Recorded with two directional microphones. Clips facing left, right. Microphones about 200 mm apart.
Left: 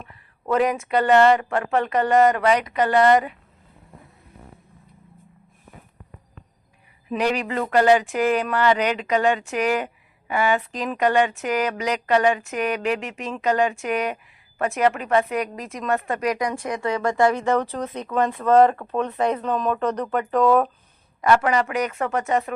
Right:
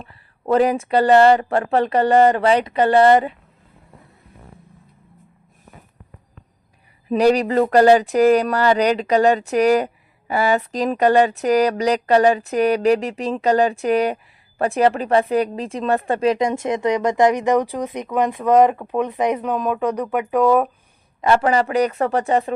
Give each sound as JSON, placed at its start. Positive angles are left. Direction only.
{"t": 0.0, "sound": "speech", "side_deg": -35}
{"t": 7.1, "sound": "speech", "side_deg": -35}
{"t": 21.2, "sound": "speech", "side_deg": -30}